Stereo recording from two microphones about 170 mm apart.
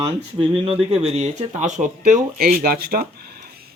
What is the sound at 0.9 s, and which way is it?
Speech, 40° right (ahead or behind).